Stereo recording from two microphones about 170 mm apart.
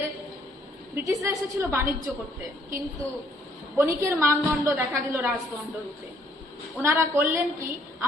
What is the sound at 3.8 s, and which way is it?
A woman's voice, 20° right (ahead or behind).